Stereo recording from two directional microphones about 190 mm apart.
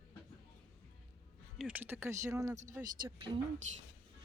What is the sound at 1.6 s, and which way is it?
Speech, 10° right (ahead or behind).